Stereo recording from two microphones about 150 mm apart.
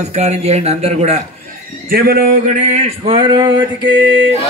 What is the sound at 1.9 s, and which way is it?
Speech, 75° right (ahead or behind).